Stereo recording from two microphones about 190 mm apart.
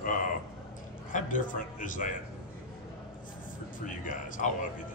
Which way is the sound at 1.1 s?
45° left (ahead or behind).